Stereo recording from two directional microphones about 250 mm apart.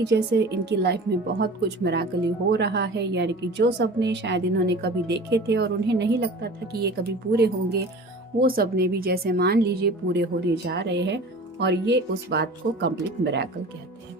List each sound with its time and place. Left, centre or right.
0.0 s a woman's voice: right